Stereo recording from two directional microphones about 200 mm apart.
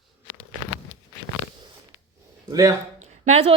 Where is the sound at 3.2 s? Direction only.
30° right (ahead or behind).